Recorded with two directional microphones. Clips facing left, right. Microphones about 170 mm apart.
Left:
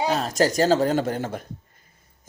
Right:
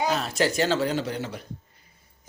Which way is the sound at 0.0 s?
35° left (ahead or behind).